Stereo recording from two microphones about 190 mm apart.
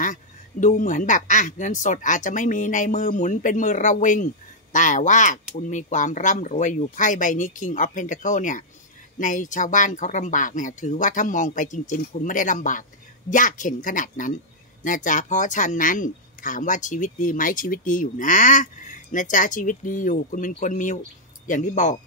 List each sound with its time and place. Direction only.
0.0 s speech: 40° left (ahead or behind)